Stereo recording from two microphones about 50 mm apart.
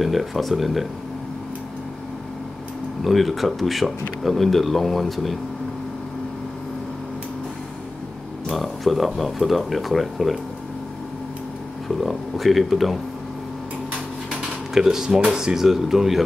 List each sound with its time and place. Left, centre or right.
0.0 s speech: centre
3.0 s speech: centre
8.5 s speech: centre
12.0 s speech: centre
14.7 s speech: centre